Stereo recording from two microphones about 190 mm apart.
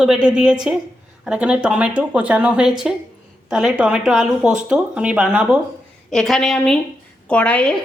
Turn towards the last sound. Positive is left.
turn(degrees=5)  # may be behind; listen again after turning